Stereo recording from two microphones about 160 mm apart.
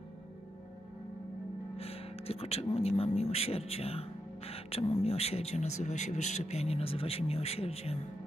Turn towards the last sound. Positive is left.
turn(degrees=40)  # may be behind; listen again after turning